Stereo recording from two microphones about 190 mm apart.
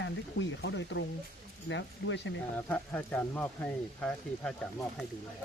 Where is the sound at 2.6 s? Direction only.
5° left (ahead or behind).